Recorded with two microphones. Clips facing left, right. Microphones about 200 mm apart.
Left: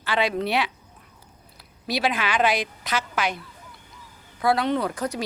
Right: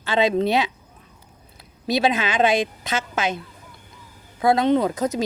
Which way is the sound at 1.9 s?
25° right (ahead or behind).